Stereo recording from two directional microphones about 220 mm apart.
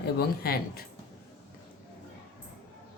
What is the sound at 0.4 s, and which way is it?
Speech, 45° left (ahead or behind).